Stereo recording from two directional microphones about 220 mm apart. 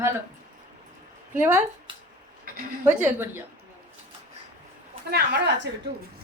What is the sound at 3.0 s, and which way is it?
Speech, 10° right (ahead or behind).